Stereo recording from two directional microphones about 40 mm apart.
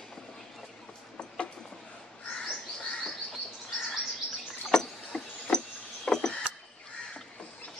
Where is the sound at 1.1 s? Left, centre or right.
Left.